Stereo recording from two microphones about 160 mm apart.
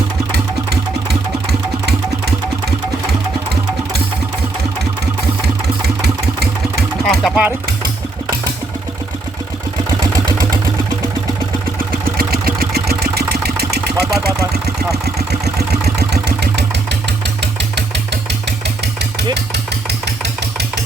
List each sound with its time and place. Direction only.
6.0 s vehicle: 90° right
7.0 s speech: centre (ahead or behind)
11.9 s engine: 70° right (ahead or behind)
16.0 s engine: 90° right